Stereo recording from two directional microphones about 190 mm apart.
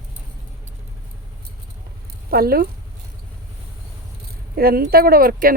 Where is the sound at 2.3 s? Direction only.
55° right (ahead or behind).